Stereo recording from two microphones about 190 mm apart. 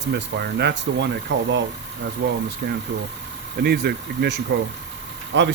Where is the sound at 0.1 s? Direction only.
60° right (ahead or behind).